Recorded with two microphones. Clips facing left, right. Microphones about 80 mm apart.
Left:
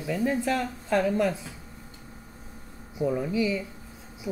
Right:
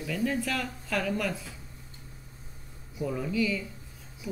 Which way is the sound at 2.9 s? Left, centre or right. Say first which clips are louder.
Left 4 dB; left.